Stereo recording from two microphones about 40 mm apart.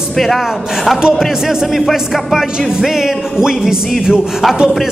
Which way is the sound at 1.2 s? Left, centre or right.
Centre.